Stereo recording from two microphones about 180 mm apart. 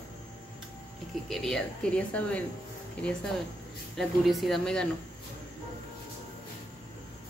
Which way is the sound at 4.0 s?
Centre (ahead or behind).